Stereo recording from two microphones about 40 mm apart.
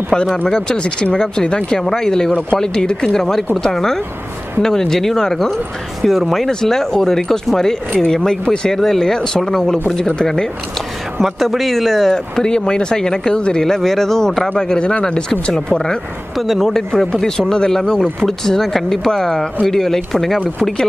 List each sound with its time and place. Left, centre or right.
0.5 s speech: centre
11.3 s speech: centre
14.6 s speech: left
16.3 s speech: centre
16.9 s speech: centre